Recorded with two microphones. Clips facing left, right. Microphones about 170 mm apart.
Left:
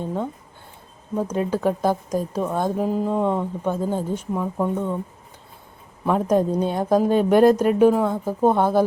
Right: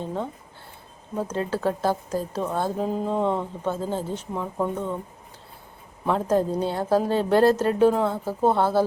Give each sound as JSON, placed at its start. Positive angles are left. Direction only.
{"t": 0.0, "sound": "a woman's voice", "side_deg": 5}
{"t": 4.5, "sound": "speech", "side_deg": 0}
{"t": 6.1, "sound": "a woman's voice", "side_deg": 15}